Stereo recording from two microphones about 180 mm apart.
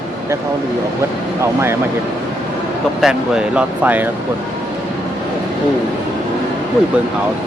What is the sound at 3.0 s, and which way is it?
Speech, 5° right (ahead or behind).